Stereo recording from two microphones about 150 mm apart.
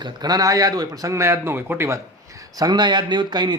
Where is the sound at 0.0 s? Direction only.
25° right (ahead or behind).